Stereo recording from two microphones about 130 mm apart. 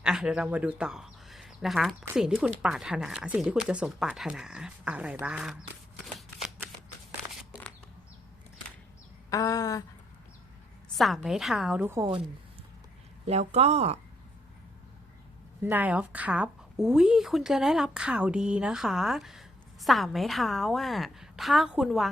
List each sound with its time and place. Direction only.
0.0 s speech: 5° right (ahead or behind)
6.1 s shuffling cards: centre (ahead or behind)
9.3 s a sound: 25° left (ahead or behind)
10.9 s speech: centre (ahead or behind)
11.8 s a woman's voice: 20° right (ahead or behind)
13.2 s speech: 55° right (ahead or behind)
15.6 s speech: 15° right (ahead or behind)